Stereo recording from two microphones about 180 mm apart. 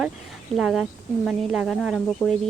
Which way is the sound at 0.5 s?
Centre (ahead or behind).